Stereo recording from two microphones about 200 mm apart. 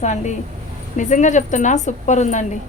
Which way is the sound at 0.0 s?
35° left (ahead or behind).